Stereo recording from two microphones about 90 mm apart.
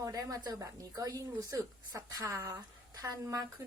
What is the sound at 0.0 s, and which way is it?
A woman's voice, 40° right (ahead or behind).